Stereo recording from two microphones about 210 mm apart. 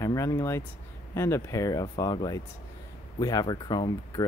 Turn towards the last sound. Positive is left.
turn(degrees=20)  # may be behind; listen again after turning